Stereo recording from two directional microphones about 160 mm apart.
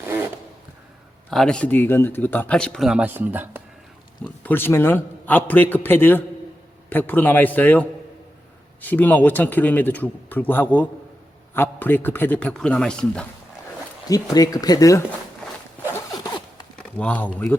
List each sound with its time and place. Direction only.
0.0 s zipper: 15° right (ahead or behind)
1.3 s speech: 5° left (ahead or behind)
4.2 s speech: 10° left (ahead or behind)
14.1 s speech: 25° left (ahead or behind)
16.7 s a sound: 10° left (ahead or behind)
17.3 s speech: 10° left (ahead or behind)